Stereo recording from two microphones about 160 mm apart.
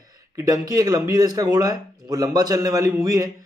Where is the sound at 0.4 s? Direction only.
20° right (ahead or behind).